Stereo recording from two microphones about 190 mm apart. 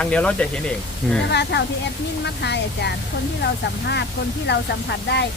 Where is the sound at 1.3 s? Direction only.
60° left (ahead or behind).